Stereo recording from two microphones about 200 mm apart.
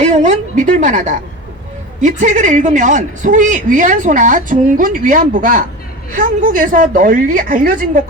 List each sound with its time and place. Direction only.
0.0 s a woman's voice: 35° right (ahead or behind)